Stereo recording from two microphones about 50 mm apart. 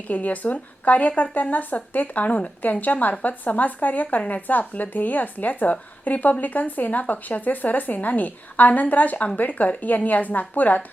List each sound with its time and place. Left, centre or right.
0.1 s speech: left